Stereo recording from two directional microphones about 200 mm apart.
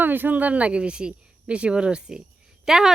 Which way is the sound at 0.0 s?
10° right (ahead or behind).